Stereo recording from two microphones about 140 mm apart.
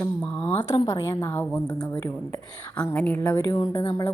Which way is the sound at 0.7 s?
35° left (ahead or behind).